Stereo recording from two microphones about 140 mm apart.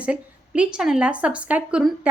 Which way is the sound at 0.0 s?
10° right (ahead or behind).